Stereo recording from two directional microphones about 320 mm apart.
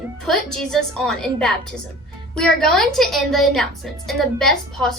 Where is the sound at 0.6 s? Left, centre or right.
Centre.